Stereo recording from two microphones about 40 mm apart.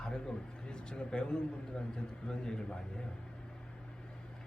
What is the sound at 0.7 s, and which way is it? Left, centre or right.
A man's voice, left.